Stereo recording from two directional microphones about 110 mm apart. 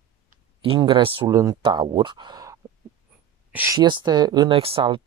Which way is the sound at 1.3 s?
30° right (ahead or behind).